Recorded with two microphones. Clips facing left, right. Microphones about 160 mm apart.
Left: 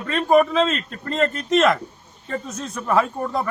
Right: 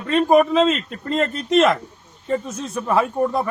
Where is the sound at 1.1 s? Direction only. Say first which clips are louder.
Right 2 dB; 15° right (ahead or behind).